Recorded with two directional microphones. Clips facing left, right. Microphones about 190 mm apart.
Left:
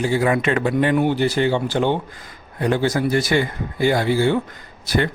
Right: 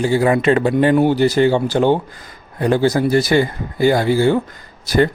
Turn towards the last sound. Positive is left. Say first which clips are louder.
# right 6 dB
turn(degrees=-40)  # may be behind; listen again after turning